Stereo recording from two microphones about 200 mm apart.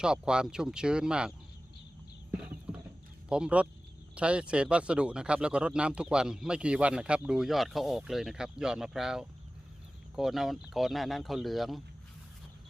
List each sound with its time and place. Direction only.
0.0 s speech: 5° right (ahead or behind)
3.2 s speech: 5° right (ahead or behind)